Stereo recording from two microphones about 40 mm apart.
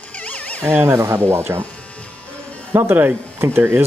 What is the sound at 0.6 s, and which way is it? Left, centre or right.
Speech, right.